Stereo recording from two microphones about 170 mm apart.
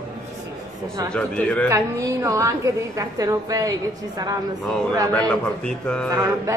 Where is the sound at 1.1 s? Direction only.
5° left (ahead or behind).